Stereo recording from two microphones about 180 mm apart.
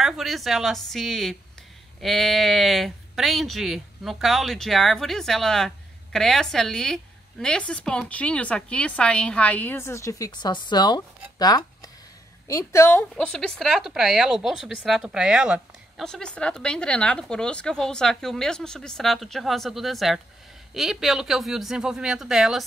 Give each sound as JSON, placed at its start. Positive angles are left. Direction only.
{"t": 0.0, "sound": "a woman's voice", "side_deg": 0}
{"t": 13.1, "sound": "speech", "side_deg": 5}